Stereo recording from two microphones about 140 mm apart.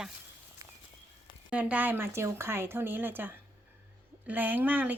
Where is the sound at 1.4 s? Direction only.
10° right (ahead or behind).